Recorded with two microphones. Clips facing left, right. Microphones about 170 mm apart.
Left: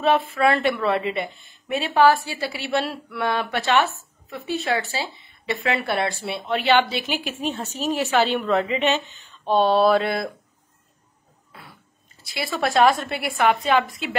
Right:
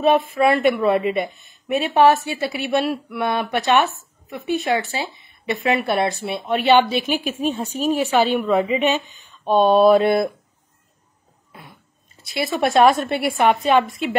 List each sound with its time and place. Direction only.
0.0 s speech: 15° right (ahead or behind)
12.2 s a woman's voice: 20° right (ahead or behind)